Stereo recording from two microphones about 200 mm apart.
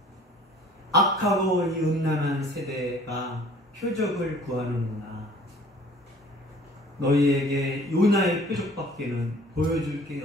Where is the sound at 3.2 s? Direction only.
Centre (ahead or behind).